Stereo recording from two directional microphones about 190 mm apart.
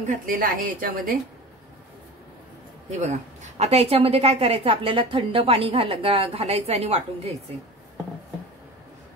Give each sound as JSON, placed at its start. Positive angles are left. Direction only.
{"t": 0.0, "sound": "a woman's voice", "side_deg": -45}
{"t": 3.5, "sound": "a woman's voice", "side_deg": -35}